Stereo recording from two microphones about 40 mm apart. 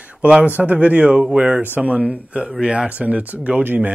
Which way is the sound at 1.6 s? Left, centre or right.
Right.